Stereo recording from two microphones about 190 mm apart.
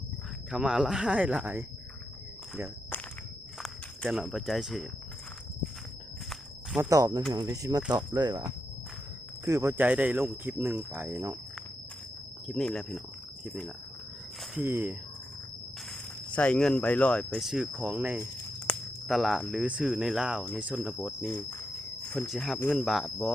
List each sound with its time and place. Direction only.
0.5 s speech: 5° right (ahead or behind)
3.6 s speech: centre (ahead or behind)
6.7 s speech: 15° right (ahead or behind)
12.5 s speech: centre (ahead or behind)
14.5 s speech: 10° right (ahead or behind)
15.9 s speech: 5° left (ahead or behind)